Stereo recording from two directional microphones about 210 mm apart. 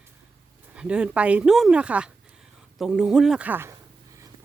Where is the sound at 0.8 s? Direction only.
5° right (ahead or behind).